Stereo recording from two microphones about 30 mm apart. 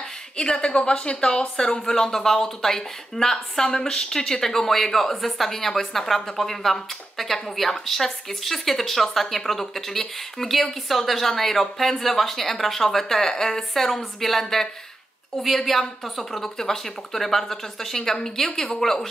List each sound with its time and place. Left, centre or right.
0.4 s a woman's voice: left
4.4 s speech: centre
15.4 s a woman's voice: centre
16.4 s speech: centre